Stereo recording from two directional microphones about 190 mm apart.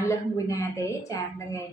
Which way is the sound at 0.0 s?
15° left (ahead or behind).